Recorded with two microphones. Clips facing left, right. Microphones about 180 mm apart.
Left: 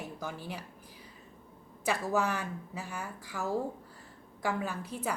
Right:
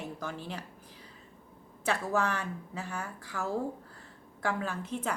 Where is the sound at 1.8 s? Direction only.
10° left (ahead or behind).